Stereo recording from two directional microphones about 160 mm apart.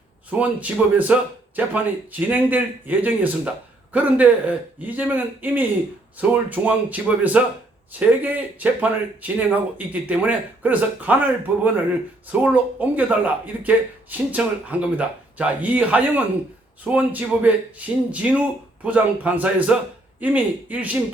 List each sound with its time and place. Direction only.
0.3 s speech: 10° right (ahead or behind)